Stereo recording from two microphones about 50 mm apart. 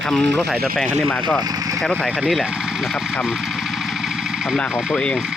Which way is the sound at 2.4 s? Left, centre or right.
Centre.